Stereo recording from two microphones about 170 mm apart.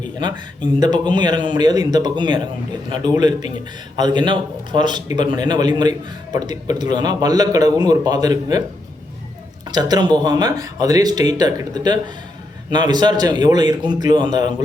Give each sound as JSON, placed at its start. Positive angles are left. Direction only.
{"t": 0.2, "sound": "a man's voice", "side_deg": -25}
{"t": 9.6, "sound": "a man's voice", "side_deg": -25}